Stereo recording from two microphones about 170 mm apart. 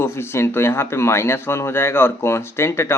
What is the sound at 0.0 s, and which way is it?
Speech, 15° left (ahead or behind).